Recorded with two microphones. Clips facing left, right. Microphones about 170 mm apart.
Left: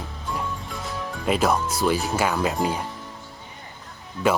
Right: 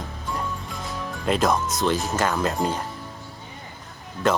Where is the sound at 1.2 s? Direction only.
5° left (ahead or behind).